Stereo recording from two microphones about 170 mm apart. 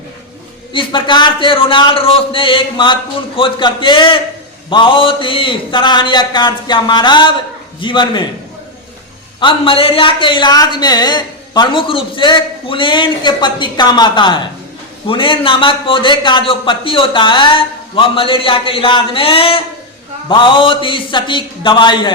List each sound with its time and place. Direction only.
0.7 s a man's voice: 30° left (ahead or behind)
9.4 s a man's voice: 30° left (ahead or behind)